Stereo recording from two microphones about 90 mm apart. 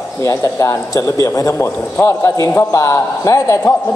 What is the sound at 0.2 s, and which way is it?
A man's voice, 35° left (ahead or behind).